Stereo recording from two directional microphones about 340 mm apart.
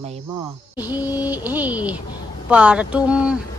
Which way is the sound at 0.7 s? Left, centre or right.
Centre.